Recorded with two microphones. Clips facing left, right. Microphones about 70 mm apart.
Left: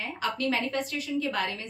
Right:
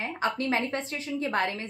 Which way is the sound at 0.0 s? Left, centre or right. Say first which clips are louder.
Right 1 dB; right.